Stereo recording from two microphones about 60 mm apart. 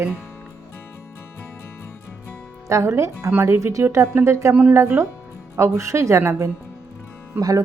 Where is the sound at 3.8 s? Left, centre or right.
Right.